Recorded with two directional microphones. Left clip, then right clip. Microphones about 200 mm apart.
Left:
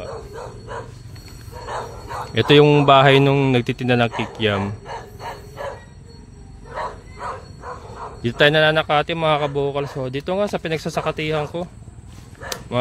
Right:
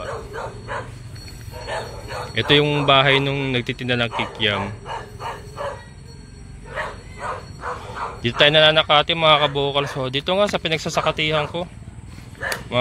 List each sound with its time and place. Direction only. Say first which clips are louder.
0.3 s bow-wow: right 3 dB; 45° left (ahead or behind)
1.7 s speech: even; 55° left (ahead or behind); by 5.0 s 40° left (ahead or behind)
6.7 s bow-wow: even; 50° left (ahead or behind)
8.2 s speech: right 1 dB; 25° left (ahead or behind)